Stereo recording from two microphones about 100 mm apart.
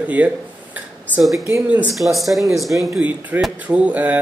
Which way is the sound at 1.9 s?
Centre (ahead or behind).